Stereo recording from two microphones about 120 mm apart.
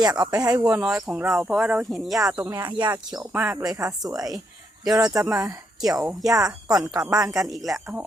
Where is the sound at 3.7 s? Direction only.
30° right (ahead or behind).